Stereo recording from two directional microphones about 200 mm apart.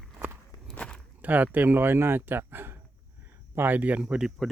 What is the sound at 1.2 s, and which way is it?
Speech, 10° right (ahead or behind).